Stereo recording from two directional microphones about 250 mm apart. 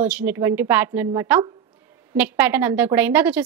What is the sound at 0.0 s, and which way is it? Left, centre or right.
A woman's voice, centre.